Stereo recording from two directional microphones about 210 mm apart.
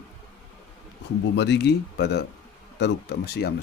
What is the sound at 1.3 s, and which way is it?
Speech, 55° left (ahead or behind).